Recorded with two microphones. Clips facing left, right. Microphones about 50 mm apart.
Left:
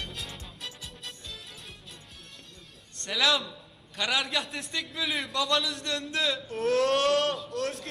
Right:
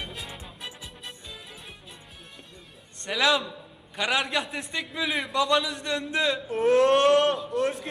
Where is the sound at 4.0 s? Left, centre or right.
Centre.